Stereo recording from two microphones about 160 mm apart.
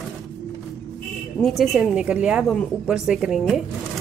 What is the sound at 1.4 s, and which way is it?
A woman's voice, centre (ahead or behind).